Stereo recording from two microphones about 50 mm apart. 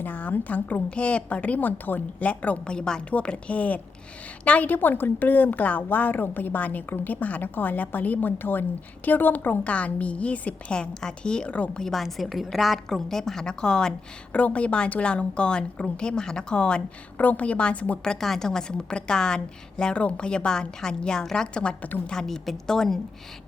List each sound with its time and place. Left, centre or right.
0.0 s a woman's voice: left
2.7 s a woman's voice: centre
3.1 s a woman's voice: left
11.8 s a woman's voice: centre
14.3 s a woman's voice: left
17.2 s a woman's voice: left
18.0 s a woman's voice: centre